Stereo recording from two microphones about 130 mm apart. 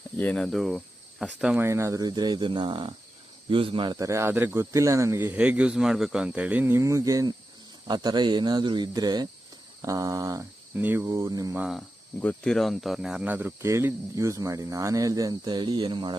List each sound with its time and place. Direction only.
0.2 s speech: 10° left (ahead or behind)
1.6 s speech: 20° right (ahead or behind); by 3.9 s 40° right (ahead or behind)
3.9 s speech: 25° right (ahead or behind)
10.8 s speech: 15° right (ahead or behind)
11.1 s speech: 25° right (ahead or behind)
11.5 s speech: 5° right (ahead or behind)
11.8 s speech: 10° left (ahead or behind); by 16.1 s 35° right (ahead or behind)